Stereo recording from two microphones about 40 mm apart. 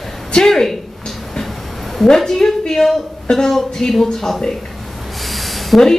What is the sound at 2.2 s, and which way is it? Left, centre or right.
A woman's voice, centre.